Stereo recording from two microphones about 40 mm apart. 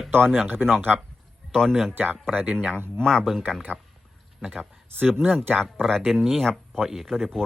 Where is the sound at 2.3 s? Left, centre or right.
Right.